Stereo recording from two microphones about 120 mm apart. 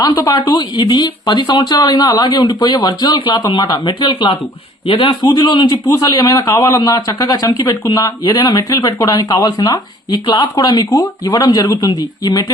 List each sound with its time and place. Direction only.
0.0 s a man's voice: 30° left (ahead or behind)